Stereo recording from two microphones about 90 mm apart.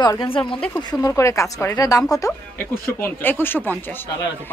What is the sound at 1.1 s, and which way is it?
A woman's voice, 35° left (ahead or behind).